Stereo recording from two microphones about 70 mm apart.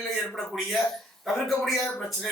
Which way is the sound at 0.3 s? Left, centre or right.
Centre.